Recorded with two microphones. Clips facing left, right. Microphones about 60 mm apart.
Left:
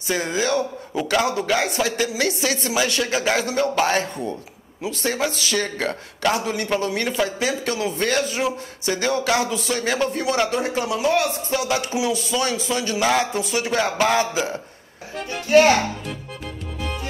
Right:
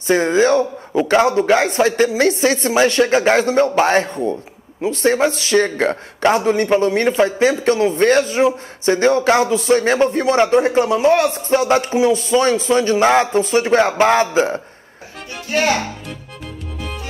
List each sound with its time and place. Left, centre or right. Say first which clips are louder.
0.0 s speech: right 9 dB; right
16.8 s music: left 1 dB; centre